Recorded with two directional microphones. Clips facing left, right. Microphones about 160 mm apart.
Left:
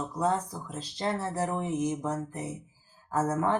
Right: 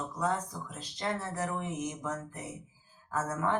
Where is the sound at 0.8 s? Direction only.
30° left (ahead or behind).